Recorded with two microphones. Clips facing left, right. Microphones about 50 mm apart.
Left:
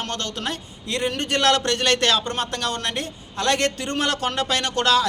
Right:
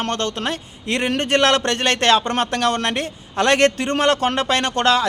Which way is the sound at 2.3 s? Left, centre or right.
Right.